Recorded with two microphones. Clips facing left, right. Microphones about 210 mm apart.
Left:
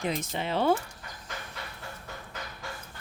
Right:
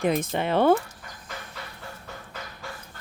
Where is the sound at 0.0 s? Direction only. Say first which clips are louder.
Right 7 dB; 55° right (ahead or behind).